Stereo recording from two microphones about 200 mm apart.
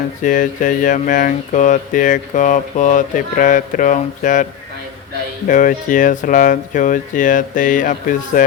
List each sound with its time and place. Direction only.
0.2 s speech: 40° left (ahead or behind)
5.5 s speech: 40° left (ahead or behind)